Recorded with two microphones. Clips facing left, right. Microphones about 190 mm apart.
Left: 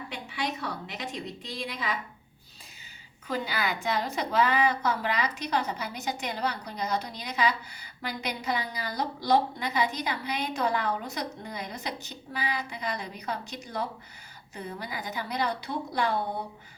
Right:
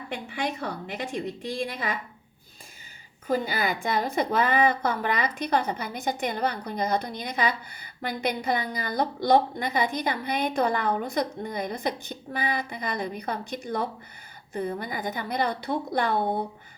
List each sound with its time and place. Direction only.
0.1 s a woman's voice: 50° right (ahead or behind)
3.2 s a woman's voice: 50° right (ahead or behind)